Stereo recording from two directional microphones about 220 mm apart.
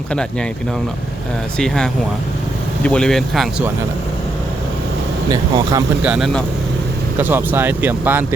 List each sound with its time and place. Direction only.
1.5 s speech: 5° left (ahead or behind)
5.3 s speech: 20° right (ahead or behind)
6.0 s speech: 5° right (ahead or behind)